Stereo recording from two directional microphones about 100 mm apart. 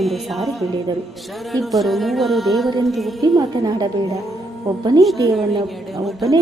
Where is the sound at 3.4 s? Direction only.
40° right (ahead or behind).